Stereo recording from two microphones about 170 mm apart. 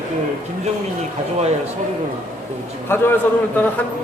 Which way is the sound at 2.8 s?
15° left (ahead or behind).